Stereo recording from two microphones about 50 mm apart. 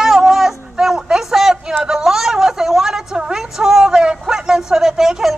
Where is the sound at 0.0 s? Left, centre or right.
Centre.